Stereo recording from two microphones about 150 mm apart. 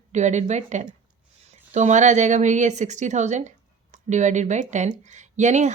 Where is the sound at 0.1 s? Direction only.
50° right (ahead or behind).